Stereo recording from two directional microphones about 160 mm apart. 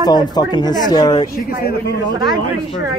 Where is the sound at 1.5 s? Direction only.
70° left (ahead or behind).